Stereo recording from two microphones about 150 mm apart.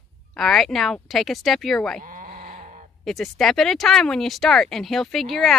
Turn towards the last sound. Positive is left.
turn(degrees=0)  # may be behind; listen again after turning